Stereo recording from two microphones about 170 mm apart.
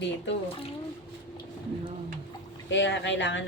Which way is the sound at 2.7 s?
90° left.